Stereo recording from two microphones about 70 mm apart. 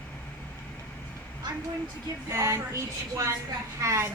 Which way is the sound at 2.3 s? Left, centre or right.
Right.